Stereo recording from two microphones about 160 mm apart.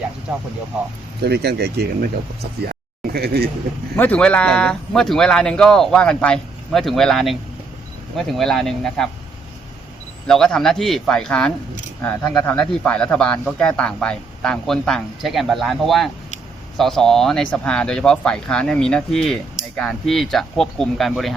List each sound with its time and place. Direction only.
1.2 s speech: 90° right
2.6 s speech: 75° right (ahead or behind)
3.9 s speech: 10° left (ahead or behind)
10.2 s speech: 5° left (ahead or behind)